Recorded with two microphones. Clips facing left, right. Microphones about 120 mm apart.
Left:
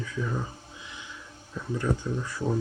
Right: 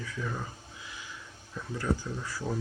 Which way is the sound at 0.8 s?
25° left (ahead or behind).